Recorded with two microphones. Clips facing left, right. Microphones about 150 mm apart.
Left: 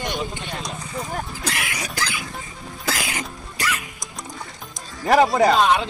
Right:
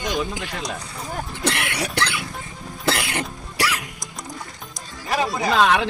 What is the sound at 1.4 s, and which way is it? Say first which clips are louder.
Speech: right 4 dB; 65° right (ahead or behind).